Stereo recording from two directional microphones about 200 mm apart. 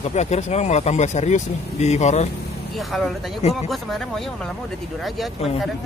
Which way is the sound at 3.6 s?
Centre (ahead or behind).